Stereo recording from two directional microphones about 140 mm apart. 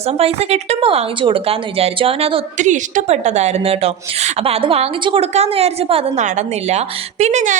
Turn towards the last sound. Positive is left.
turn(degrees=-60)  # may be behind; listen again after turning